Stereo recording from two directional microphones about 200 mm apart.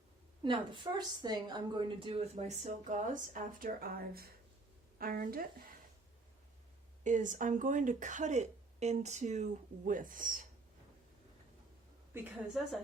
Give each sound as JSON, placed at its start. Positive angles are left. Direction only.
{"t": 0.4, "sound": "a woman's voice", "side_deg": -25}
{"t": 7.0, "sound": "a woman's voice", "side_deg": -40}
{"t": 12.1, "sound": "a woman's voice", "side_deg": -10}